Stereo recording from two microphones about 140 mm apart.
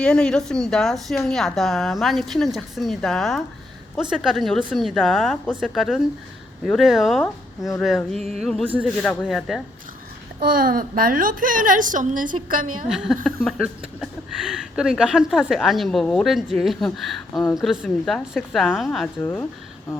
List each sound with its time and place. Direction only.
0.0 s a man's voice: 5° left (ahead or behind)
10.6 s a woman's voice: 90° right
12.9 s speech: 5° right (ahead or behind)
19.2 s speech: 15° left (ahead or behind)